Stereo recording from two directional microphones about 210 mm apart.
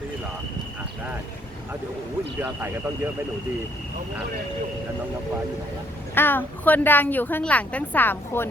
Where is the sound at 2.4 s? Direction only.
10° right (ahead or behind).